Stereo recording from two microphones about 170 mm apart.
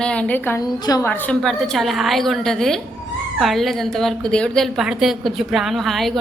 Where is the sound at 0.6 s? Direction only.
25° left (ahead or behind).